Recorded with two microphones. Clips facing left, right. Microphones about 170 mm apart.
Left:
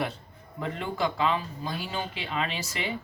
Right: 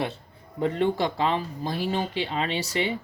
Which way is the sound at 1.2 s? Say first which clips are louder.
Right 2 dB; 40° right (ahead or behind).